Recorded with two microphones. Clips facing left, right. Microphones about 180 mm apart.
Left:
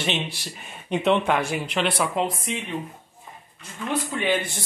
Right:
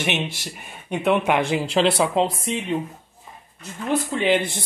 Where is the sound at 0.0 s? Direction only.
20° right (ahead or behind).